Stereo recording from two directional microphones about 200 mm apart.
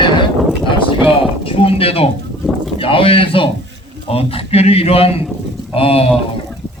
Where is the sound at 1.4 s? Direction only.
30° left (ahead or behind).